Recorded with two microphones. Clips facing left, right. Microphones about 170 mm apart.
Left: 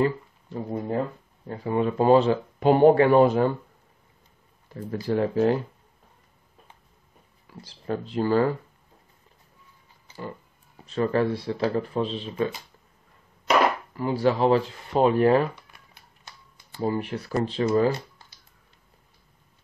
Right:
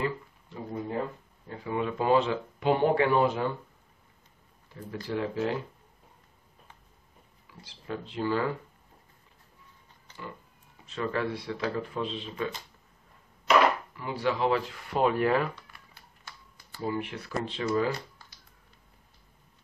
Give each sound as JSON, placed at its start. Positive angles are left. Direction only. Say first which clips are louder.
{"t": 0.0, "sound": "speech", "louder": "left 7 dB", "side_deg": 40}
{"t": 4.7, "sound": "speech", "louder": "left 7 dB", "side_deg": 45}
{"t": 7.6, "sound": "speech", "louder": "left 7 dB", "side_deg": 40}
{"t": 10.9, "sound": "speech", "louder": "left 7 dB", "side_deg": 35}
{"t": 13.5, "sound": "a sound", "louder": "left 1 dB", "side_deg": 35}
{"t": 13.9, "sound": "speech", "louder": "left 7 dB", "side_deg": 40}
{"t": 15.5, "sound": "a sound", "louder": "left 1 dB", "side_deg": 15}
{"t": 16.8, "sound": "speech", "louder": "left 5 dB", "side_deg": 40}